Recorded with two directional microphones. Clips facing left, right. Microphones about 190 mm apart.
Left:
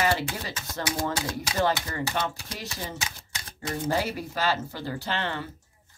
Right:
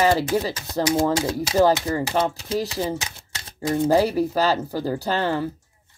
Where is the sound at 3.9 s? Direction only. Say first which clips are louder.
Right 10 dB; 40° right (ahead or behind).